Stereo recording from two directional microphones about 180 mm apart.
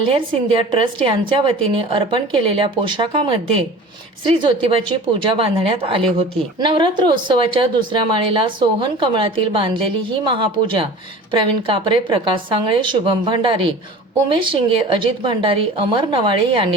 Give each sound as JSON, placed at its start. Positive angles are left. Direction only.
{"t": 0.1, "sound": "speech", "side_deg": -30}
{"t": 4.4, "sound": "speech", "side_deg": -30}